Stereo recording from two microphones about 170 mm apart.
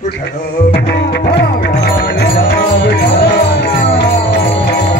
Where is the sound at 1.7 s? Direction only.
60° left (ahead or behind); by 4.4 s 80° left.